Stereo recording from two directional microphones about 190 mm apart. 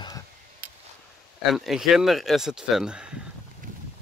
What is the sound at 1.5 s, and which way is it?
Speech, centre (ahead or behind).